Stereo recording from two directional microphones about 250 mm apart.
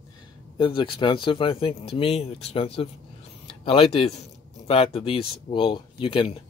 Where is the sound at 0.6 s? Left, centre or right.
Centre.